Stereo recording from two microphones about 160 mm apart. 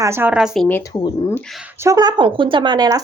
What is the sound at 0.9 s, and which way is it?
Speech, 20° left (ahead or behind).